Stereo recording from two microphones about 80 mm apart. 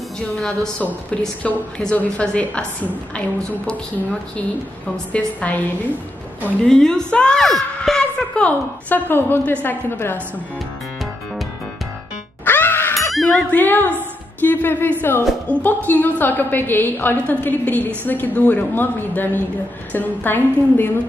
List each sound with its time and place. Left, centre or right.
1.8 s a woman's voice: centre
6.6 s speech: centre
8.4 s a woman's voice: centre
12.4 s music: left
13.1 s music: centre
13.5 s a woman's voice: left